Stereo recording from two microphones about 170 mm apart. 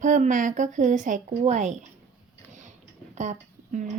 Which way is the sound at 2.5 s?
45° right (ahead or behind).